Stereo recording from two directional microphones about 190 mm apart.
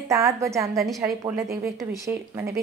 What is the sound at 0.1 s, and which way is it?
Speech, 15° right (ahead or behind).